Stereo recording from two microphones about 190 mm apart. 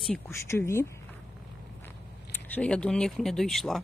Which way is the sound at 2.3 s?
10° left (ahead or behind).